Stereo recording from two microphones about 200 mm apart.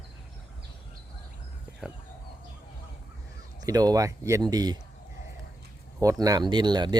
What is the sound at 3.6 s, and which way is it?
Speech, 20° right (ahead or behind).